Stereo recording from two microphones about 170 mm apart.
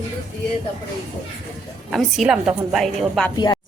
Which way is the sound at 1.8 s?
Centre (ahead or behind).